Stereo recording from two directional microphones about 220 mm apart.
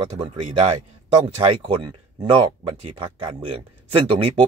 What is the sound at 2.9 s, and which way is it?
Speech, 25° right (ahead or behind).